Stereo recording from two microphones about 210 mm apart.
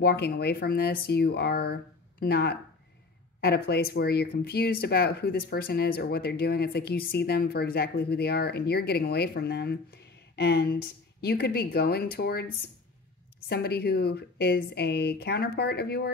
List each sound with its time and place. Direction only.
0.0 s speech: 50° left (ahead or behind)
13.5 s speech: 50° left (ahead or behind)